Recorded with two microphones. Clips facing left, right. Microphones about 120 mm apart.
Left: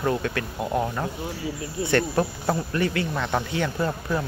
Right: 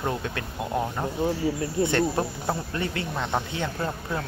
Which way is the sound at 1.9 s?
20° right (ahead or behind).